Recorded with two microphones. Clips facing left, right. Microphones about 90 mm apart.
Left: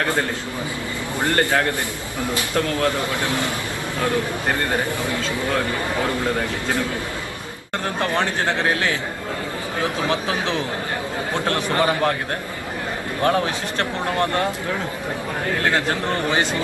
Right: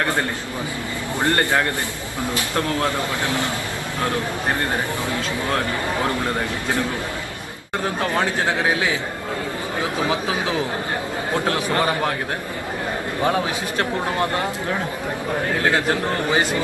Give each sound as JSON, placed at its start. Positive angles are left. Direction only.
{"t": 1.2, "sound": "a man's voice", "side_deg": -20}
{"t": 8.1, "sound": "speech", "side_deg": -10}
{"t": 10.1, "sound": "speech", "side_deg": -10}
{"t": 13.2, "sound": "speech", "side_deg": -10}
{"t": 15.6, "sound": "speech", "side_deg": -10}